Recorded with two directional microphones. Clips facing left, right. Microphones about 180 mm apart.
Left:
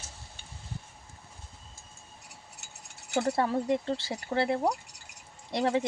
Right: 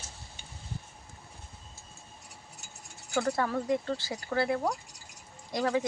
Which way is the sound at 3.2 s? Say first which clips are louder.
Left 2 dB; 30° left (ahead or behind).